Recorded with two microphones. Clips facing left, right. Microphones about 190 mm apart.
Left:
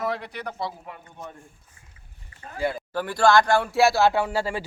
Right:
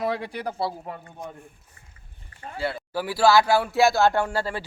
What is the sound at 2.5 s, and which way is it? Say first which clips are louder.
Speech: left 2 dB; 15° left (ahead or behind).